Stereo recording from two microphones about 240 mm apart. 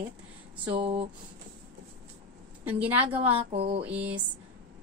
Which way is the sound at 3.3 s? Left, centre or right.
Right.